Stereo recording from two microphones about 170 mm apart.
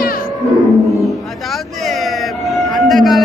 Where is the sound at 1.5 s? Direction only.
Centre (ahead or behind).